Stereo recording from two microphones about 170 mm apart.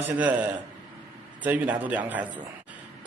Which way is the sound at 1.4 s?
10° right (ahead or behind).